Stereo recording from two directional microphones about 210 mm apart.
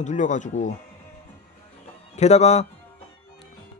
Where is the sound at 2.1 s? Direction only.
30° left (ahead or behind).